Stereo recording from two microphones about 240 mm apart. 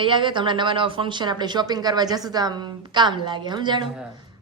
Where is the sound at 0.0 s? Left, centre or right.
Centre.